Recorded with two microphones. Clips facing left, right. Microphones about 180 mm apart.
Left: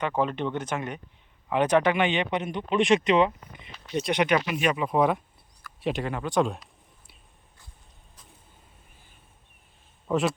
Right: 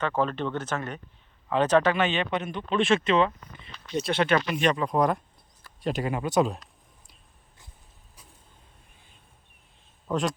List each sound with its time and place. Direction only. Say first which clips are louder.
0.0 s speech: even; 15° left (ahead or behind); by 6.7 s centre (ahead or behind)
10.1 s speech: left 2 dB; 5° left (ahead or behind)